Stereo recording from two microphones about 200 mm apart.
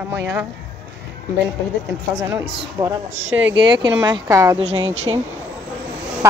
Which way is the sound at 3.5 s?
25° right (ahead or behind).